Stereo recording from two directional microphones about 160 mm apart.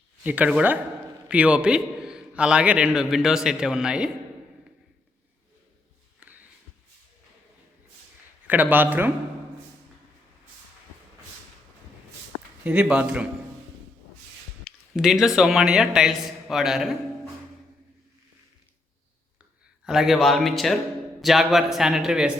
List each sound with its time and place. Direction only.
0.2 s a man's voice: 10° right (ahead or behind)
6.1 s a sound: 10° right (ahead or behind)
8.4 s speech: 10° right (ahead or behind)
12.6 s speech: 5° right (ahead or behind)
14.6 s a man's voice: centre (ahead or behind)
19.8 s a man's voice: centre (ahead or behind)